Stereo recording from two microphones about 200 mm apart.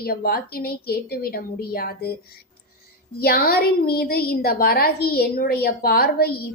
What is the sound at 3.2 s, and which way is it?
A woman's voice, 50° left (ahead or behind).